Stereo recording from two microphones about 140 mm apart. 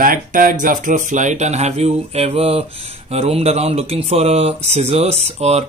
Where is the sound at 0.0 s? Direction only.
75° right (ahead or behind).